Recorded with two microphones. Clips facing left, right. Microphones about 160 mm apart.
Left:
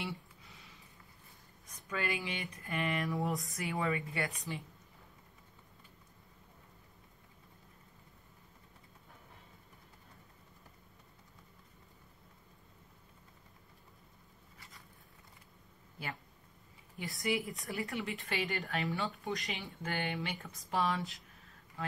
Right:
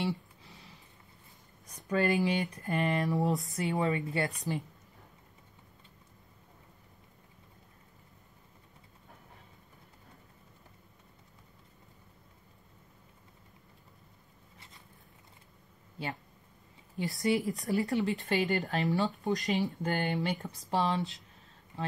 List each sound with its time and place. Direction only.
0.0 s a sound: 30° right (ahead or behind)
1.9 s speech: 40° right (ahead or behind)
3.5 s a woman's voice: 30° right (ahead or behind)
16.9 s a woman's voice: 35° right (ahead or behind)